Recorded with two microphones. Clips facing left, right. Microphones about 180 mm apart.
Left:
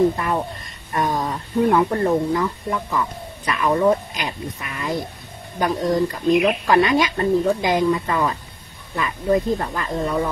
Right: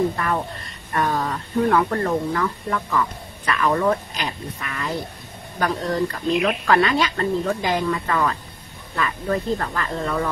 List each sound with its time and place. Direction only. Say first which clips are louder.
0.1 s speech: left 1 dB; 20° left (ahead or behind)